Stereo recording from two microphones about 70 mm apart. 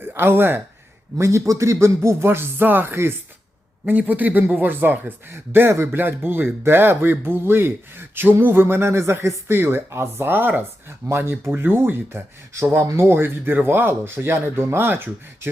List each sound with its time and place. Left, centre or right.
0.0 s speech: right
1.2 s speech: right
3.8 s speech: right